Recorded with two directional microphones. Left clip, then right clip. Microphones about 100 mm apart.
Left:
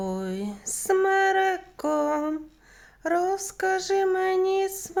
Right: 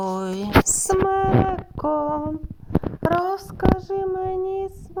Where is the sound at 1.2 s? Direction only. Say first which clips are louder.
Right 1 dB; 15° left (ahead or behind).